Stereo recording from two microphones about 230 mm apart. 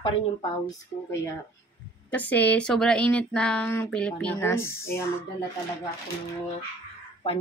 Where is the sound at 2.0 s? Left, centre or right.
Centre.